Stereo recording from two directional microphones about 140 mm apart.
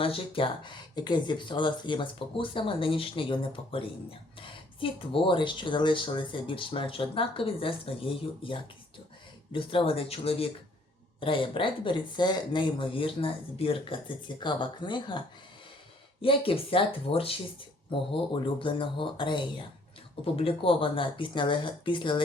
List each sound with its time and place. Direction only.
0.0 s speech: 40° left (ahead or behind)
16.2 s speech: 40° left (ahead or behind)